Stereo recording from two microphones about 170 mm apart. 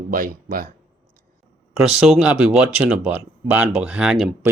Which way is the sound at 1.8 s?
5° right (ahead or behind).